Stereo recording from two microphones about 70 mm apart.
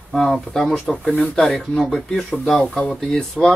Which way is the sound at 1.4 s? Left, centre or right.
Centre.